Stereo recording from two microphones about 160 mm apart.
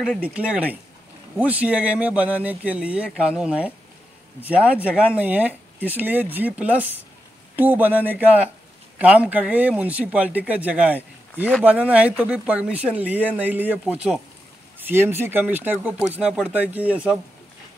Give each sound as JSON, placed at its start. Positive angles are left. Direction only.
{"t": 0.2, "sound": "speech", "side_deg": -5}